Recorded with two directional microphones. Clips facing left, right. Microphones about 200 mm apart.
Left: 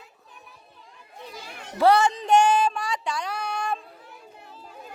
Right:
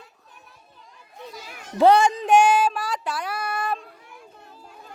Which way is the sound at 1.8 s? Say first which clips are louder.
Right 3 dB; 15° right (ahead or behind).